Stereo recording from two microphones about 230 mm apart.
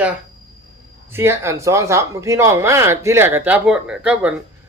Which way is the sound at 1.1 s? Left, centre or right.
Centre.